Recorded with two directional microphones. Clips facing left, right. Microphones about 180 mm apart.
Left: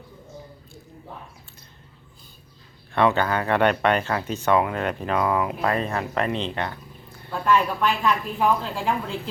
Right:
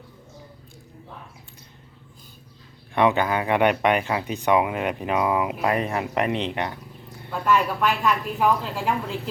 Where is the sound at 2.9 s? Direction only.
15° right (ahead or behind).